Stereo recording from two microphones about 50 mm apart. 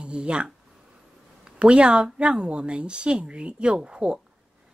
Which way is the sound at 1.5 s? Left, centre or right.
Right.